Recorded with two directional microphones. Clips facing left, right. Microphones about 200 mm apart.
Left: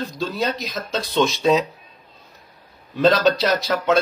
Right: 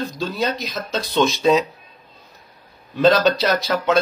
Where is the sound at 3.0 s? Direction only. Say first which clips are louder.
Right 1 dB; centre (ahead or behind).